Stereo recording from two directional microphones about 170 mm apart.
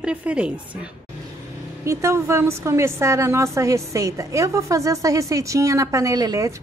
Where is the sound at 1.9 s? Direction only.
15° right (ahead or behind).